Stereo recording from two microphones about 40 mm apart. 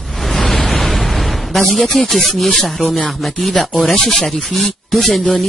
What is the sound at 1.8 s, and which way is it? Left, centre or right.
Speech, centre.